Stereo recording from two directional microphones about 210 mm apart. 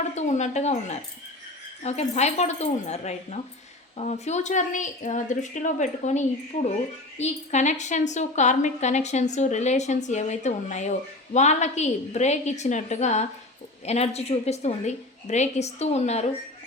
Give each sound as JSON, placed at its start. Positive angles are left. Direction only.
{"t": 0.1, "sound": "a woman's voice", "side_deg": 35}